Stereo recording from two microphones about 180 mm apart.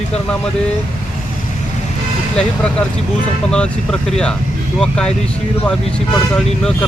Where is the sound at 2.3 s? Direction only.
5° left (ahead or behind).